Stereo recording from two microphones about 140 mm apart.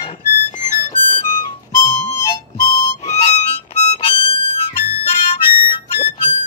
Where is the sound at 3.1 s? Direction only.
50° left (ahead or behind).